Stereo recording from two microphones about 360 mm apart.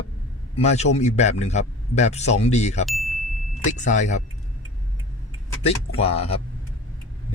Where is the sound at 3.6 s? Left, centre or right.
Centre.